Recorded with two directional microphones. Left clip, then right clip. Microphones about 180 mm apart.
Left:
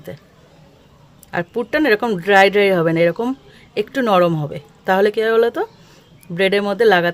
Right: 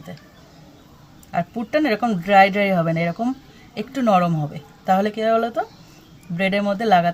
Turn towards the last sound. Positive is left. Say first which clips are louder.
# left 3 dB
turn(degrees=60)  # may be behind; listen again after turning